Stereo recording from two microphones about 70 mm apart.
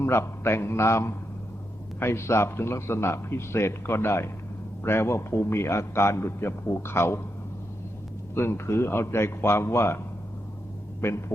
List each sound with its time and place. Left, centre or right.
0.0 s a man's voice: left
8.4 s a man's voice: left
11.0 s a man's voice: left